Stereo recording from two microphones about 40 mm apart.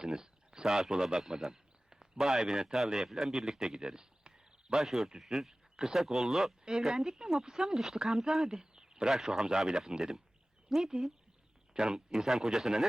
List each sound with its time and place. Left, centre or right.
0.0 s a sound: centre
0.9 s speech: centre
1.5 s a sound: centre
2.5 s speech: centre
4.8 s speech: centre
9.1 s speech: centre
9.4 s speech: centre
11.7 s speech: centre